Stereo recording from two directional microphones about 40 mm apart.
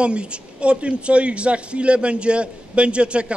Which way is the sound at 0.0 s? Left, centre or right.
Right.